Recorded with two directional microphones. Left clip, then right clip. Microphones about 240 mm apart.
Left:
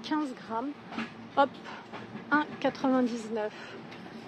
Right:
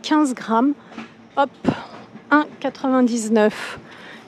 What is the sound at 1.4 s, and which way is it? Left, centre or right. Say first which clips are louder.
Speech: right 7 dB; right.